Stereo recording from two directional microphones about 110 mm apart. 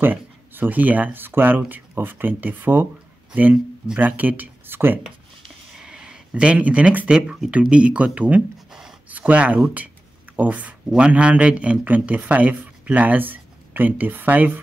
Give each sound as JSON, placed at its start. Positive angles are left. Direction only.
{"t": 0.0, "sound": "speech", "side_deg": -15}
{"t": 5.8, "sound": "speech", "side_deg": -5}